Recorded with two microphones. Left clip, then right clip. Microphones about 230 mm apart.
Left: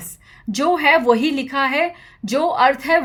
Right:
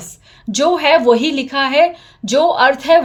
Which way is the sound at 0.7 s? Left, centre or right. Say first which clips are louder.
Right 3 dB; left.